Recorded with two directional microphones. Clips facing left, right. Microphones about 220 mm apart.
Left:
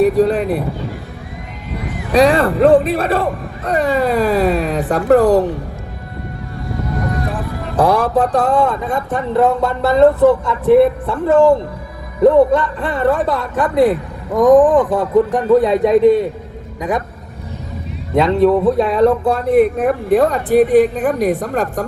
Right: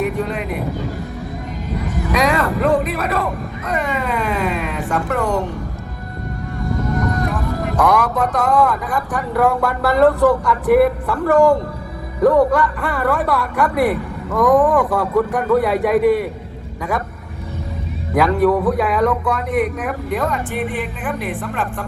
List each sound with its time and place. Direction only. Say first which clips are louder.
0.0 s a man's voice: left 9 dB; 35° left (ahead or behind)
2.1 s a man's voice: left 7 dB; 30° left (ahead or behind)
7.8 s a man's voice: left 4 dB; 30° left (ahead or behind)
18.1 s a man's voice: left 3 dB; 25° left (ahead or behind); by 21.8 s 40° left (ahead or behind)